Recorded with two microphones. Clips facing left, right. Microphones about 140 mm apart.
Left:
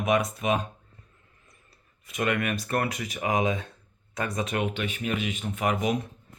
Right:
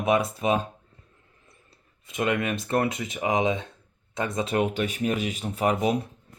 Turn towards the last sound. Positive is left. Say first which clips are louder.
# right 3 dB
turn(degrees=-30)  # may be behind; listen again after turning